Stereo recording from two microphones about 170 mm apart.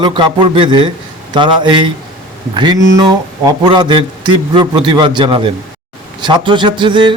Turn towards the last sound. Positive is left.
turn(degrees=-30)  # may be behind; listen again after turning